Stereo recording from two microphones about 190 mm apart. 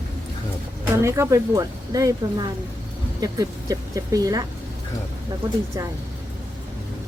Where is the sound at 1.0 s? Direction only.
15° right (ahead or behind).